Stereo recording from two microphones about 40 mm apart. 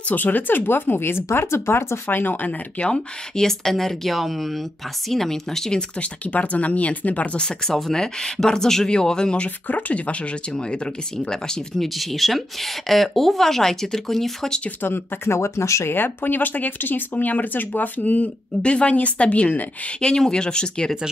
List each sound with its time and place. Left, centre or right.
0.1 s speech: left
2.0 s speech: left
2.8 s speech: left
3.4 s speech: centre
5.9 s speech: left
7.3 s speech: centre
9.7 s speech: left
10.5 s speech: left
11.8 s speech: centre
14.8 s speech: left
15.8 s speech: left
18.6 s speech: left